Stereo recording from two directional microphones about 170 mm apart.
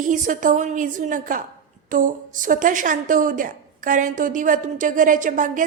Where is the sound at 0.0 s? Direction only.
50° right (ahead or behind).